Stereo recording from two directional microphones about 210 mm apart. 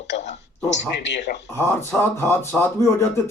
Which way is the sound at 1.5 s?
10° left (ahead or behind).